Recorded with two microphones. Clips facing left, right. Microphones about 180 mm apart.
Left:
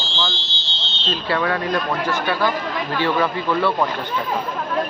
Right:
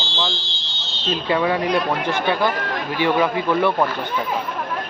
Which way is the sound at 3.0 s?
15° right (ahead or behind).